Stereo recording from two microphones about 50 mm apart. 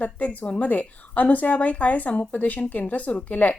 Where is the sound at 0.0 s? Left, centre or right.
Left.